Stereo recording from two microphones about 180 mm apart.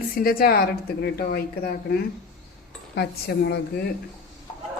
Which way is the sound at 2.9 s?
65° left (ahead or behind).